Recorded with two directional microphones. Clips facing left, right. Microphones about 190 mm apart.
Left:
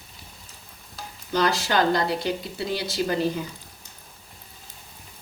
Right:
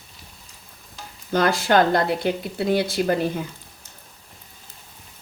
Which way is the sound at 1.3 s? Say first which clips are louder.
Right 4 dB; 50° right (ahead or behind).